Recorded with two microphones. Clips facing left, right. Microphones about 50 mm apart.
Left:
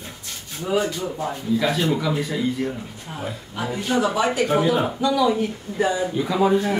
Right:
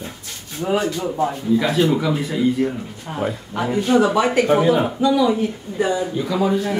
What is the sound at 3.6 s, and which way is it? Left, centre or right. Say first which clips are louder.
Speech: right 5 dB; right.